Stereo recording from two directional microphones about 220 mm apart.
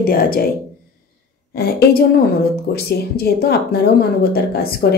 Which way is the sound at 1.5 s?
45° left (ahead or behind).